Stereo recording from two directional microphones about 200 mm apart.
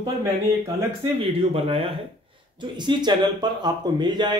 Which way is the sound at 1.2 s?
30° right (ahead or behind).